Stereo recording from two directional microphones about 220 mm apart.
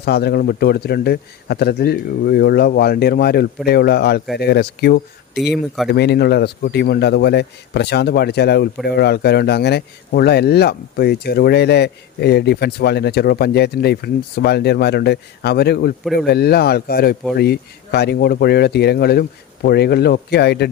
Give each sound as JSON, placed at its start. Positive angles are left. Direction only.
{"t": 0.0, "sound": "speech", "side_deg": 45}